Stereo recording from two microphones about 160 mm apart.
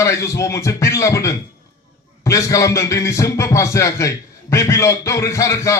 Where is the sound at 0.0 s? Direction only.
20° left (ahead or behind).